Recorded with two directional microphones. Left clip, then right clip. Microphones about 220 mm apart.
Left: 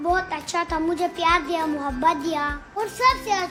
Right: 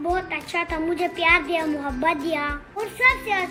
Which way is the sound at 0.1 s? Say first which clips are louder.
Left 3 dB; 15° left (ahead or behind).